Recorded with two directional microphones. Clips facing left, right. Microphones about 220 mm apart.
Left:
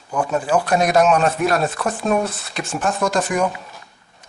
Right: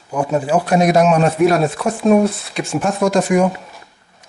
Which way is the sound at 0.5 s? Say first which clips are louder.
Right 3 dB; 10° right (ahead or behind).